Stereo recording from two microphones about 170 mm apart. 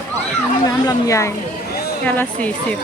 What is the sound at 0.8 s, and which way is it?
Speech, 20° left (ahead or behind).